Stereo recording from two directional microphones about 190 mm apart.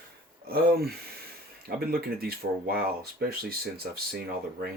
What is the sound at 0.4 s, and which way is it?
Speech, 55° right (ahead or behind).